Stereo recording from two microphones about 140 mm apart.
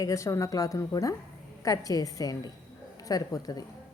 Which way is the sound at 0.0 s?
25° left (ahead or behind).